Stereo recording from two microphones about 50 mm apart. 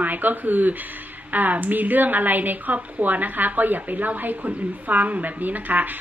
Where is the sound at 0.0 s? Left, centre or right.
Right.